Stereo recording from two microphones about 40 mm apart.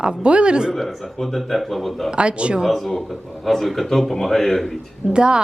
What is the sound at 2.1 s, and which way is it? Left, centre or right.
Speech, right.